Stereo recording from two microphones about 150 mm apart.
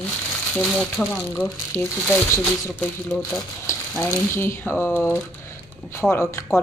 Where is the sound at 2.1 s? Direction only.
15° left (ahead or behind).